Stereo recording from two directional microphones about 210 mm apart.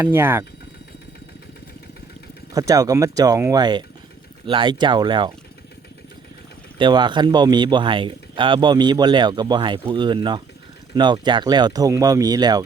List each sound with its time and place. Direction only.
0.0 s speech: 10° right (ahead or behind)
2.5 s speech: 15° right (ahead or behind)
6.7 s speech: 20° right (ahead or behind)